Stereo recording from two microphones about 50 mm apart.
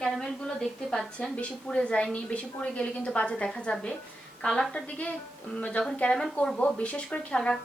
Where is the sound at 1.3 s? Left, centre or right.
Left.